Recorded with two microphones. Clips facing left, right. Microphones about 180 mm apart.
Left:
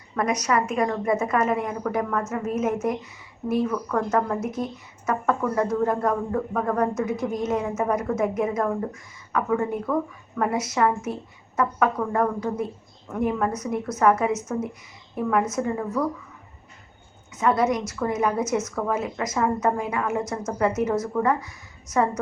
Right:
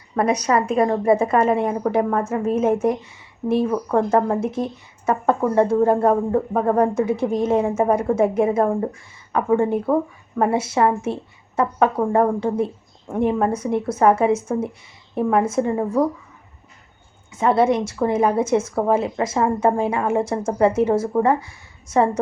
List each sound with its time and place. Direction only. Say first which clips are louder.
0.2 s a woman's voice: right 4 dB; 30° right (ahead or behind)
17.3 s speech: right 4 dB; 30° right (ahead or behind)